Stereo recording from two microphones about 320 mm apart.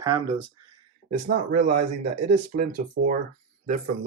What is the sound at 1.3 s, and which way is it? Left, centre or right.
Speech, right.